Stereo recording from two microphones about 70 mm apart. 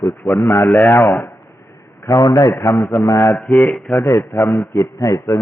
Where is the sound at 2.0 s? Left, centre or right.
Left.